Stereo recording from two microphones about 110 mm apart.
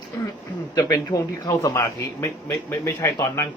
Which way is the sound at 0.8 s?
30° left (ahead or behind).